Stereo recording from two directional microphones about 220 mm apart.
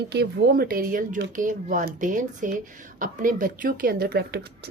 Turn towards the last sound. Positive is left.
turn(degrees=-45)  # may be behind; listen again after turning